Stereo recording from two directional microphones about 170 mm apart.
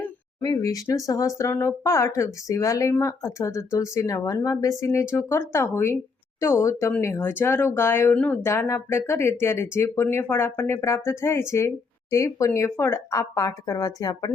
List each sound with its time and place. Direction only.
0.4 s speech: 20° left (ahead or behind)